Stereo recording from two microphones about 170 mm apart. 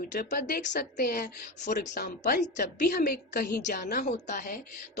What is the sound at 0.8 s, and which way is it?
A woman's voice, 60° left (ahead or behind).